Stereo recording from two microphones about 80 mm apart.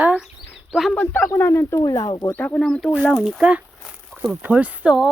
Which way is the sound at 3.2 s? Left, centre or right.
Centre.